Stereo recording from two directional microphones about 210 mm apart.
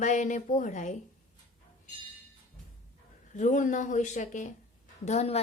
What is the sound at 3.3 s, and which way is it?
A woman's voice, 35° left (ahead or behind).